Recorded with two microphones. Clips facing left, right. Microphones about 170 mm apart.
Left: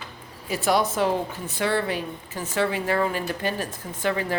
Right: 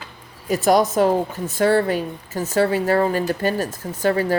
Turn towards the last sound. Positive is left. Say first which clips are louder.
# right 6 dB
turn(degrees=-40)  # may be behind; listen again after turning